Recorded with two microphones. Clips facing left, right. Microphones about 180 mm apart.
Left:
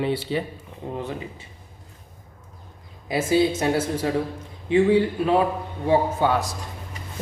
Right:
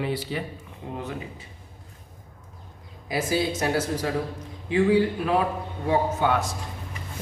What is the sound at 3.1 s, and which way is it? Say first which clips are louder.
A man's voice: left 5 dB; 25° left (ahead or behind).